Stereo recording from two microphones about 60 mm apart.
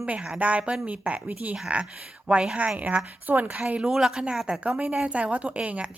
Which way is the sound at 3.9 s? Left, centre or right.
Centre.